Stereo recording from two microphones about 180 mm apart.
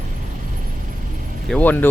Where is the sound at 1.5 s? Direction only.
10° left (ahead or behind).